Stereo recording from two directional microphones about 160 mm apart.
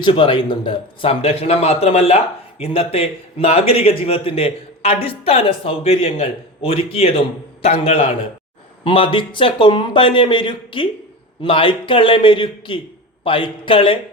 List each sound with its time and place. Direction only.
0.0 s a man's voice: 30° left (ahead or behind)